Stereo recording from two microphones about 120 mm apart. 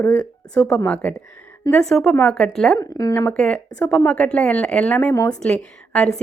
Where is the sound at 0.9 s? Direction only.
15° left (ahead or behind).